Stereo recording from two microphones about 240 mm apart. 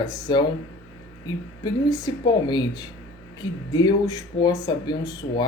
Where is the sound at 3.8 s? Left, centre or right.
Centre.